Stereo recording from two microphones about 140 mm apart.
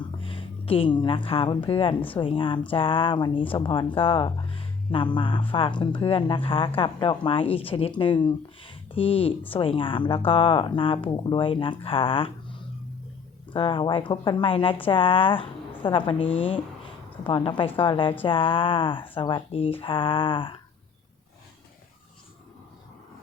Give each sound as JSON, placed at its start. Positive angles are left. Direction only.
{"t": 0.2, "sound": "a woman's voice", "side_deg": 40}